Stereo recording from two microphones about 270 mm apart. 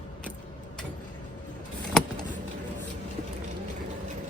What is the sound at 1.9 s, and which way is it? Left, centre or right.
Vehicle, centre.